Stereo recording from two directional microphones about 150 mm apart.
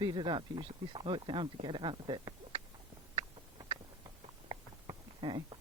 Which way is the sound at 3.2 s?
35° right (ahead or behind).